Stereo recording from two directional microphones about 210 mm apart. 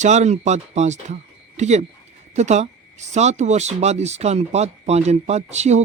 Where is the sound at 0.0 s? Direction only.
35° right (ahead or behind).